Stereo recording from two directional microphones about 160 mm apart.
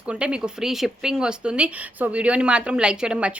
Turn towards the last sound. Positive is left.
turn(degrees=-5)  # may be behind; listen again after turning